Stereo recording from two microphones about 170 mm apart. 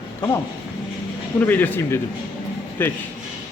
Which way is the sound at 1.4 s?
10° left (ahead or behind).